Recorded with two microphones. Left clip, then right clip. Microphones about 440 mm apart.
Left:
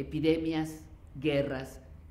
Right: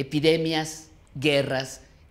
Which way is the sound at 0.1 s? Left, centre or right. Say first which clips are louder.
Right 7 dB; left.